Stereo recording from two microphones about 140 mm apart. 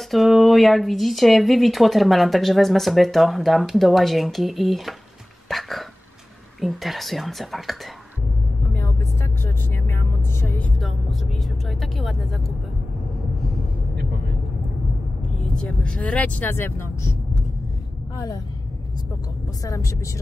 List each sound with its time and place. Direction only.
0.1 s speech: centre (ahead or behind)
5.5 s a sound: centre (ahead or behind)
6.6 s speech: centre (ahead or behind)
8.7 s vehicle: 20° left (ahead or behind)
10.8 s music: centre (ahead or behind)
15.5 s speech: 5° left (ahead or behind); by 18.4 s 25° left (ahead or behind)
19.6 s a woman's voice: 25° left (ahead or behind)